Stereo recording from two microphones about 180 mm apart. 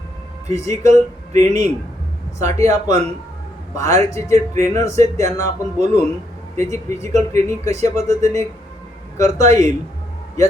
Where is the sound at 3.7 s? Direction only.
15° left (ahead or behind).